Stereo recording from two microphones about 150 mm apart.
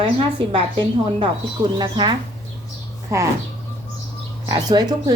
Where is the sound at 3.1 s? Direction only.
20° right (ahead or behind).